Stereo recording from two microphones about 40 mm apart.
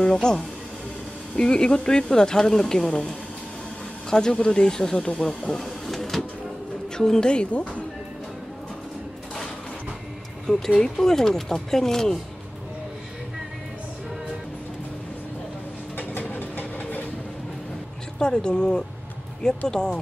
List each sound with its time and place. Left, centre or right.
0.0 s speech: centre
5.6 s printer: centre
7.0 s speech: centre
7.2 s speech: left
10.4 s speech: centre
16.2 s vehicle: left
18.2 s speech: left